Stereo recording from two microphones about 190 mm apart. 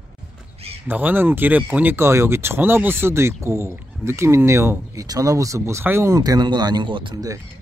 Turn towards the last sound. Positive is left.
turn(degrees=-20)  # may be behind; listen again after turning